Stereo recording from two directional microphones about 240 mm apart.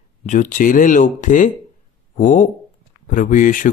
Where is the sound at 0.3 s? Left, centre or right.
Left.